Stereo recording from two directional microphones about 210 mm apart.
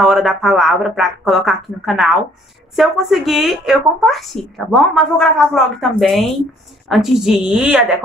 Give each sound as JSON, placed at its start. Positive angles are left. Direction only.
{"t": 0.0, "sound": "speech", "side_deg": 0}